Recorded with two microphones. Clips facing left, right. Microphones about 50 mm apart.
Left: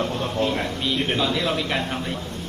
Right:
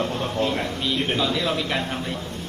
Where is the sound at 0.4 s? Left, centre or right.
Left.